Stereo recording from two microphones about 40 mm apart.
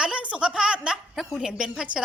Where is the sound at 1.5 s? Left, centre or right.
Right.